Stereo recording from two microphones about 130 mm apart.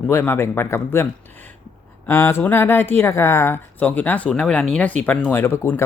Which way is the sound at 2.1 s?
20° left (ahead or behind).